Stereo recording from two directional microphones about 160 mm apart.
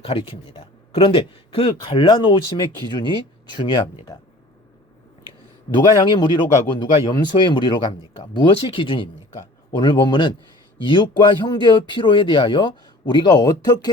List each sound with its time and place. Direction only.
0.0 s speech: 35° left (ahead or behind)
5.7 s speech: 30° left (ahead or behind)